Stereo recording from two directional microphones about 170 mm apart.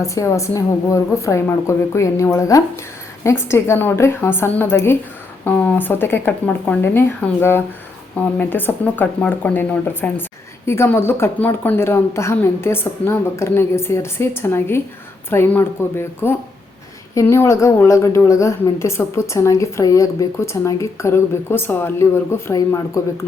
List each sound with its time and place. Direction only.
0.0 s a woman's voice: 20° left (ahead or behind)